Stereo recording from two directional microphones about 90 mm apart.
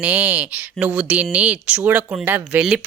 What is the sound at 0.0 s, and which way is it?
Speech, 15° right (ahead or behind).